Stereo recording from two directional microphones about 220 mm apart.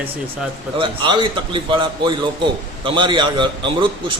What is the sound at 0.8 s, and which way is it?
A man's voice, 20° right (ahead or behind).